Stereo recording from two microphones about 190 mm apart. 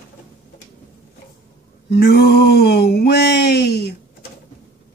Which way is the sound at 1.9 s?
55° left (ahead or behind).